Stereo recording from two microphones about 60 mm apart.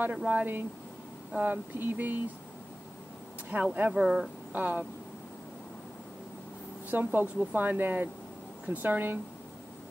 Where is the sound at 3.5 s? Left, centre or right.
Right.